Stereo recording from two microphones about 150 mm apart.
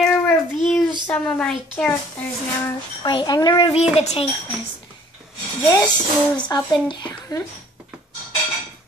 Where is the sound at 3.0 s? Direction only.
30° left (ahead or behind).